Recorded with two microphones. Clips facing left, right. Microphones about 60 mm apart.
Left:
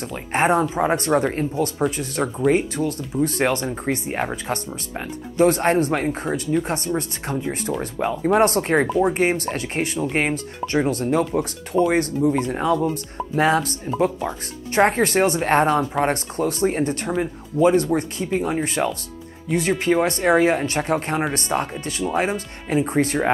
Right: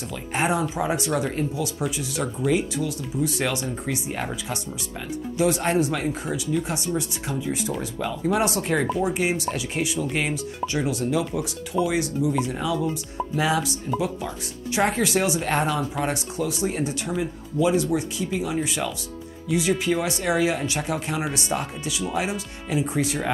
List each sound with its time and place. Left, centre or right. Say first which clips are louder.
0.1 s speech: left 5 dB; left
19.8 s speech: left 5 dB; left